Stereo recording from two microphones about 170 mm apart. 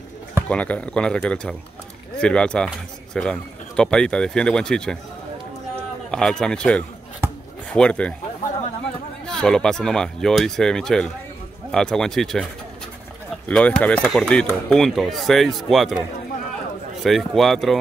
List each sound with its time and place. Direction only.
0.5 s speech: 5° left (ahead or behind)
6.1 s speech: 5° left (ahead or behind)
9.2 s speech: 5° left (ahead or behind)
13.5 s speech: 5° left (ahead or behind)
17.0 s speech: centre (ahead or behind)